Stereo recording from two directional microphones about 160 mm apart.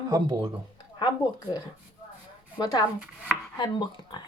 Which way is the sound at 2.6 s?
25° left (ahead or behind).